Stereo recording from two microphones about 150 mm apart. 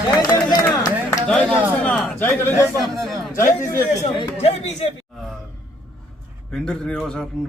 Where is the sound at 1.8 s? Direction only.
10° left (ahead or behind).